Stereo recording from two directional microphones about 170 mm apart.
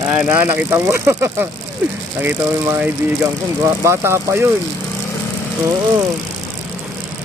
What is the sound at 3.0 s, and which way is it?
Speech, 10° right (ahead or behind).